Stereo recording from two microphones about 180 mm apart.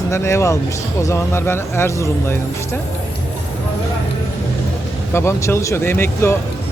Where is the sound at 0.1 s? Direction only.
15° left (ahead or behind).